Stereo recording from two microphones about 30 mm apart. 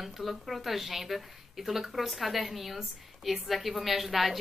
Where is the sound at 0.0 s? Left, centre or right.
Centre.